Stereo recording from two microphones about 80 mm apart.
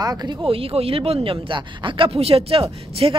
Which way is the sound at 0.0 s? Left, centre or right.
Right.